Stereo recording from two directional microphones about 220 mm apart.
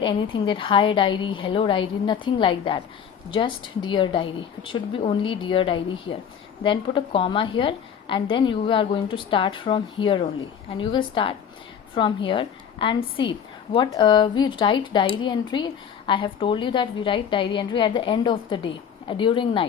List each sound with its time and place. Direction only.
0.0 s speech: 20° left (ahead or behind)